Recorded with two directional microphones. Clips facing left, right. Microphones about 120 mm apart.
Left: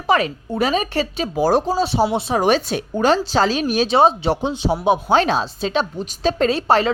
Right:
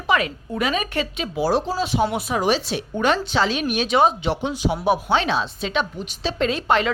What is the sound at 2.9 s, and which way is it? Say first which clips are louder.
A woman's voice: left 4 dB; 35° left (ahead or behind).